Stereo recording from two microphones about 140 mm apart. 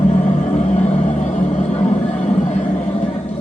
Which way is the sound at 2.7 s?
55° left (ahead or behind).